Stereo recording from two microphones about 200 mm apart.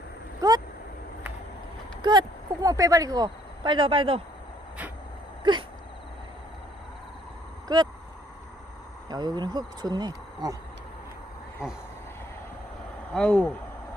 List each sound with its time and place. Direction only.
0.4 s speech: 20° right (ahead or behind)
2.0 s speech: 20° right (ahead or behind)
5.4 s a sound: 25° right (ahead or behind)
7.7 s speech: 20° right (ahead or behind)
9.0 s speech: 20° right (ahead or behind)
11.6 s a sound: 5° right (ahead or behind)
13.1 s speech: 5° left (ahead or behind)